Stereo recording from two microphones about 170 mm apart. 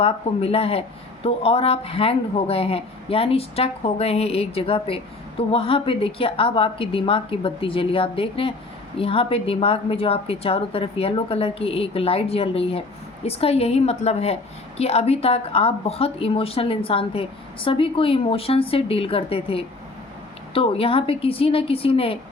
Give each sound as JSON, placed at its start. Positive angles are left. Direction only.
{"t": 0.0, "sound": "speech", "side_deg": 35}